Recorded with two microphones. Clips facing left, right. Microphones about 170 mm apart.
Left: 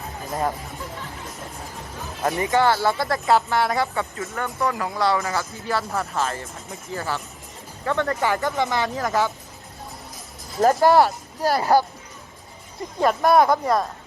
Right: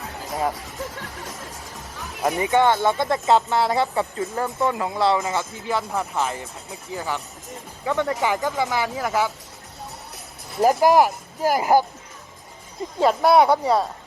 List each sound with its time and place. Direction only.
2.2 s speech: 20° right (ahead or behind)
10.6 s speech: 15° right (ahead or behind)
13.0 s speech: 10° right (ahead or behind)